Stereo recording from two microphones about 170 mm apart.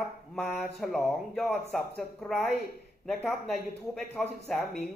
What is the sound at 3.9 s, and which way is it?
Speech, centre (ahead or behind).